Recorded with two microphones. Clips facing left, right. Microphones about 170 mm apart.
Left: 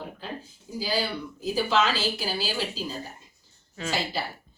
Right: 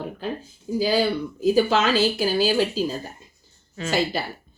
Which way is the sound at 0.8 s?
55° right (ahead or behind).